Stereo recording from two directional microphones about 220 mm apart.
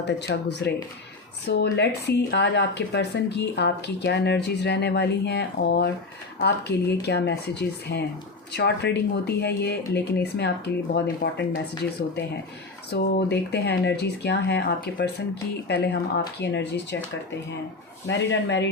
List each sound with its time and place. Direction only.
0.2 s speech: 50° left (ahead or behind)
12.9 s speech: 50° left (ahead or behind)
18.1 s speech: 55° left (ahead or behind)